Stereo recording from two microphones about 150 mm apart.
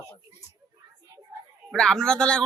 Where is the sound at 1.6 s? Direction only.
5° left (ahead or behind).